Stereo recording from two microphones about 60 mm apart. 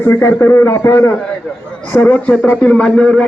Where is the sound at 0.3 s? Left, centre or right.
Left.